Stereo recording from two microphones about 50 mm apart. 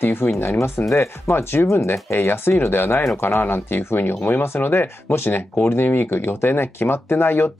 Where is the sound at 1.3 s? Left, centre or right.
Left.